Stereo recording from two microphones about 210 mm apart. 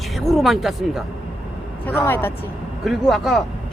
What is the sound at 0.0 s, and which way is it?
Speech, centre (ahead or behind).